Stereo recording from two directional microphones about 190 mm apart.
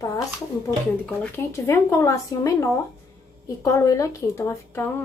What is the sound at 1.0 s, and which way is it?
A woman's voice, 10° left (ahead or behind).